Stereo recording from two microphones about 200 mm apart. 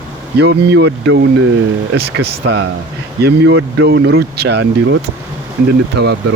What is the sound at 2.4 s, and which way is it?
Speech, 75° right (ahead or behind).